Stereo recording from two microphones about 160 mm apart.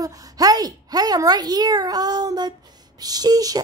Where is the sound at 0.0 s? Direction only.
25° right (ahead or behind).